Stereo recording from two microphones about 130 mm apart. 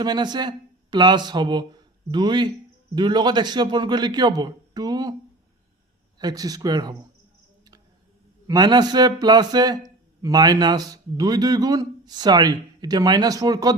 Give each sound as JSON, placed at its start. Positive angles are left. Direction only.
{"t": 0.0, "sound": "a man's voice", "side_deg": -35}
{"t": 6.1, "sound": "a man's voice", "side_deg": -30}
{"t": 8.4, "sound": "a man's voice", "side_deg": -30}